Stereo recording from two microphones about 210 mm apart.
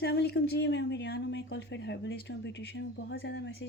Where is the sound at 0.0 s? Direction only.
50° left (ahead or behind).